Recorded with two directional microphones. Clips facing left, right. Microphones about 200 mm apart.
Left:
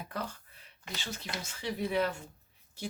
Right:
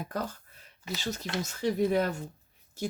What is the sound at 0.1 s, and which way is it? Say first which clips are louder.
Speech: right 4 dB; 40° right (ahead or behind).